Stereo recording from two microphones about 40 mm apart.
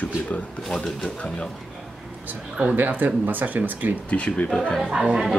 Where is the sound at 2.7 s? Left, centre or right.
Right.